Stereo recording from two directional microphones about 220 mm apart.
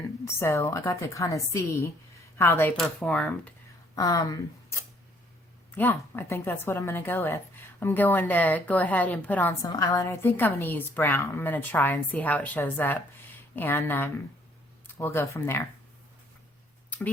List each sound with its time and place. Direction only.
0.3 s a woman's voice: 10° left (ahead or behind)